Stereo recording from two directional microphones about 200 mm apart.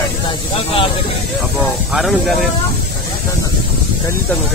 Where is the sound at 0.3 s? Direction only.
25° left (ahead or behind).